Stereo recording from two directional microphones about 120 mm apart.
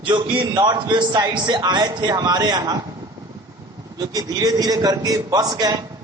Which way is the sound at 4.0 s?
30° right (ahead or behind).